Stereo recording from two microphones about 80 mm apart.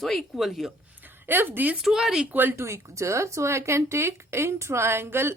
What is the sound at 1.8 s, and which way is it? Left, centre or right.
Speech, centre.